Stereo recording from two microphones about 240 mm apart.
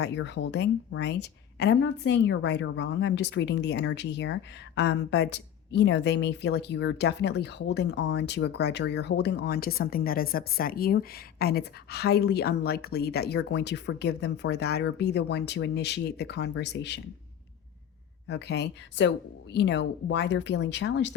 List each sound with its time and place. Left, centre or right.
0.0 s a woman's voice: left
18.3 s a woman's voice: left